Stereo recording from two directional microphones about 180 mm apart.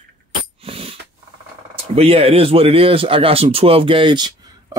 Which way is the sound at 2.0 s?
30° right (ahead or behind).